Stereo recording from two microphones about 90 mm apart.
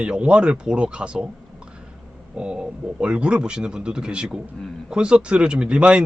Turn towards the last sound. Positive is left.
turn(degrees=-10)  # may be behind; listen again after turning